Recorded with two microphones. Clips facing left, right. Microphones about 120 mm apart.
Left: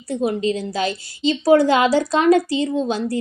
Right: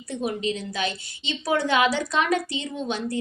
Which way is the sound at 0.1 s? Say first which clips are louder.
Left 7 dB; 35° left (ahead or behind).